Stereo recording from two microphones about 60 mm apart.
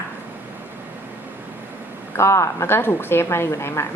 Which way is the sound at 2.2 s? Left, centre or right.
Left.